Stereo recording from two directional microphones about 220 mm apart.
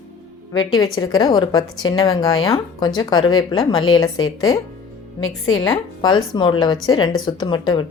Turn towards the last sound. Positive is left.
turn(degrees=20)  # may be behind; listen again after turning